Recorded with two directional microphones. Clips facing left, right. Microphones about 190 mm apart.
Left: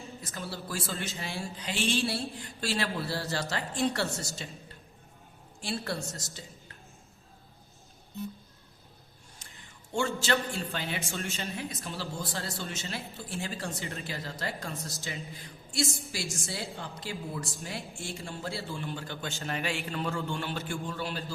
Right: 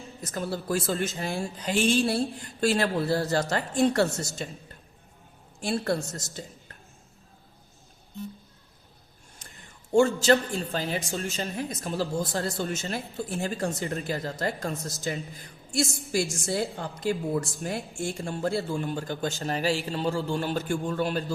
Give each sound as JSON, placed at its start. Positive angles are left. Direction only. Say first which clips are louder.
{"t": 0.3, "sound": "speech", "louder": "right 10 dB", "side_deg": -50}
{"t": 5.6, "sound": "speech", "louder": "right 7 dB", "side_deg": -50}
{"t": 9.4, "sound": "a sound", "louder": "right 5 dB", "side_deg": -45}
{"t": 9.9, "sound": "a man's voice", "louder": "right 9 dB", "side_deg": -40}